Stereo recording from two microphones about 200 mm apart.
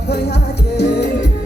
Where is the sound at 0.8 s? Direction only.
55° left (ahead or behind).